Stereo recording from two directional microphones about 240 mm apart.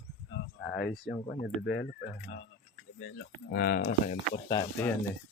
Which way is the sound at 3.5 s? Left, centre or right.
Left.